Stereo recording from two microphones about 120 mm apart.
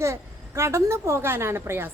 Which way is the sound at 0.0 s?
25° right (ahead or behind).